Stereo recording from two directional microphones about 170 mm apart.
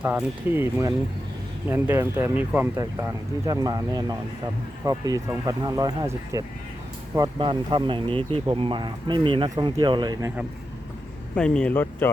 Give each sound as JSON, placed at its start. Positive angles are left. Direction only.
{"t": 0.0, "sound": "speech", "side_deg": -10}
{"t": 11.3, "sound": "speech", "side_deg": 5}